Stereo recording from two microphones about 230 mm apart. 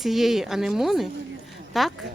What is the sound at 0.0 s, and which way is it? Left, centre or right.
Speech, centre.